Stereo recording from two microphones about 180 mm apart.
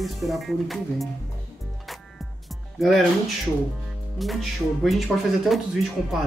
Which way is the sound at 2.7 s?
Centre (ahead or behind).